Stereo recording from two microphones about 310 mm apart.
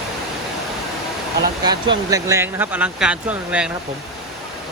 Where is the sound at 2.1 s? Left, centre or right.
Centre.